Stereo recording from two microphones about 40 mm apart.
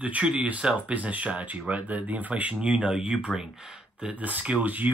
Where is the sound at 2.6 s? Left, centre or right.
Right.